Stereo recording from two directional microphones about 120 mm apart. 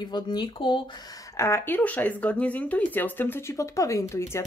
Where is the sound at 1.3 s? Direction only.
20° left (ahead or behind).